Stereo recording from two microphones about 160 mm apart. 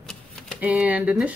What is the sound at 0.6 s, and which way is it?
Speech, 10° right (ahead or behind).